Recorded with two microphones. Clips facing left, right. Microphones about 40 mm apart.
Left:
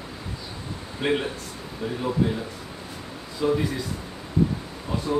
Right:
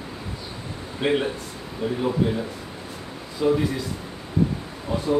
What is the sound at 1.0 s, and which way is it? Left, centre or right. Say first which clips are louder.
Speech: right 2 dB; centre.